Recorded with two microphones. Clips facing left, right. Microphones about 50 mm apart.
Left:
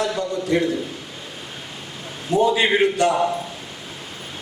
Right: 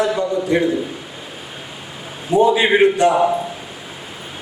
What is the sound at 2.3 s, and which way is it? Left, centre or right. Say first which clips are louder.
A man's voice: right 4 dB; centre.